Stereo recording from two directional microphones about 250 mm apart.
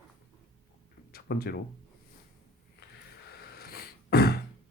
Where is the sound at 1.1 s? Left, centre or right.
Left.